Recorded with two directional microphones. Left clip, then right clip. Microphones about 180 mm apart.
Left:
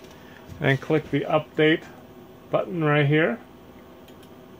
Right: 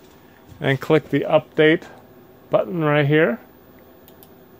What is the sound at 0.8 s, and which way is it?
Speech, 60° right (ahead or behind).